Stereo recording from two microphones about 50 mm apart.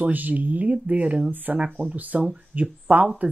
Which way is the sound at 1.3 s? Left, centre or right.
Right.